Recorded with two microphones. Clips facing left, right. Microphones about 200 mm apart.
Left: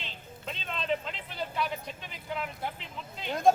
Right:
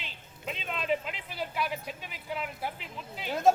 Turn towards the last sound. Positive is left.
turn(degrees=-5)  # may be behind; listen again after turning